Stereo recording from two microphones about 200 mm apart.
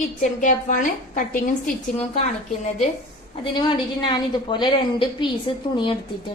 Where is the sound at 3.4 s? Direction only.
25° left (ahead or behind).